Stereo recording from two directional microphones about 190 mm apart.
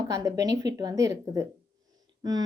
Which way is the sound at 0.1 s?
15° right (ahead or behind).